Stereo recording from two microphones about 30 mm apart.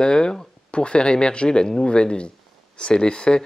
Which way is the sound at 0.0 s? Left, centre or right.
Left.